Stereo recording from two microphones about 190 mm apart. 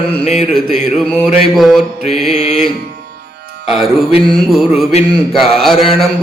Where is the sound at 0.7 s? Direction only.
Centre (ahead or behind).